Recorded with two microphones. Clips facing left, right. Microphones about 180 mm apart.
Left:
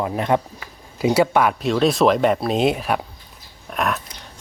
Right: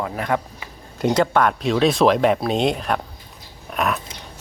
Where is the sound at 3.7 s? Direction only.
Centre (ahead or behind).